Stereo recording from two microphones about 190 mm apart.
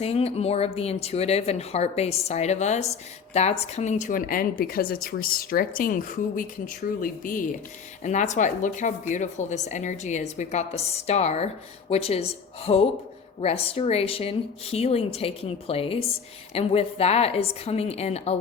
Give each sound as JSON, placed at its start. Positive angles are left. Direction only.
{"t": 0.0, "sound": "speech", "side_deg": 35}